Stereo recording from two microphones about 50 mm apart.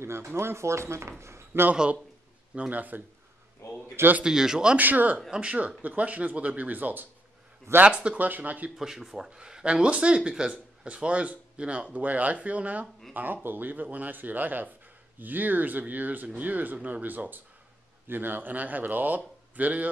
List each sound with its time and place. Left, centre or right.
0.0 s speech: right
1.5 s speech: right
2.7 s a man's voice: right
4.2 s speech: centre
4.7 s a man's voice: right
5.3 s a man's voice: right
7.8 s speech: right
8.2 s a man's voice: right
8.7 s speech: centre; by 12.8 s right
13.1 s a man's voice: right